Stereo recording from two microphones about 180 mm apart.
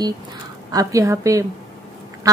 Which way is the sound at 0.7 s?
20° right (ahead or behind).